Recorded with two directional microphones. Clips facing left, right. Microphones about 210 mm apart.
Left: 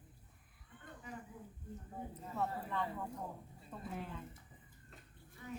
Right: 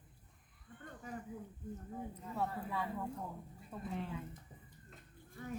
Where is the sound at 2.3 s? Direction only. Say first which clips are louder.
Even; 10° right (ahead or behind).